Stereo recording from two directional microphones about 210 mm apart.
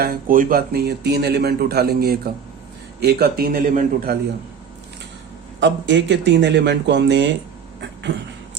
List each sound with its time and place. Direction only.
0.0 s speech: 40° right (ahead or behind)
5.5 s speech: 55° right (ahead or behind)